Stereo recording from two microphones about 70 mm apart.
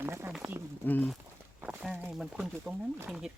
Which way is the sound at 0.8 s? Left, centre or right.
Left.